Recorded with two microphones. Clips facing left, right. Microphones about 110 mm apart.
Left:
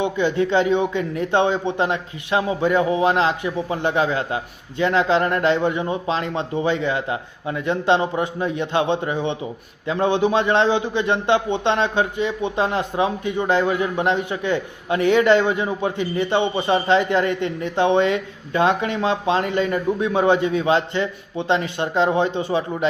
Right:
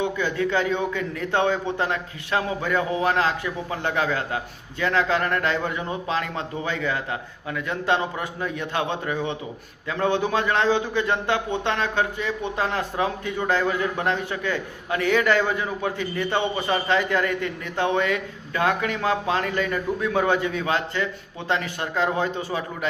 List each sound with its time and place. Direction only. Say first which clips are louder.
0.0 s a man's voice: left 4 dB; 20° left (ahead or behind)